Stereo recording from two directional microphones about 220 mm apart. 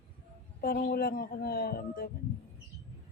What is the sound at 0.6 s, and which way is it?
Speech, 40° left (ahead or behind).